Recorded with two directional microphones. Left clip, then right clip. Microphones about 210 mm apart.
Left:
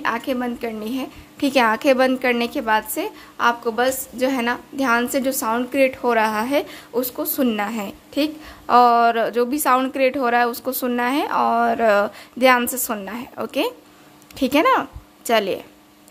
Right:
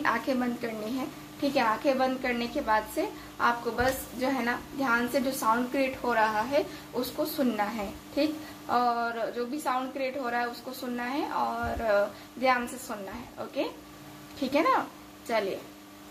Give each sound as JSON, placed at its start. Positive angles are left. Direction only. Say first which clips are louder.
{"t": 0.0, "sound": "a woman's voice", "louder": "left 5 dB", "side_deg": 35}
{"t": 1.4, "sound": "a woman's voice", "louder": "left 9 dB", "side_deg": 50}